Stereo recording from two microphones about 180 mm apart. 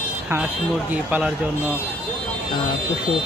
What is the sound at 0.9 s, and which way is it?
Speech, 5° right (ahead or behind).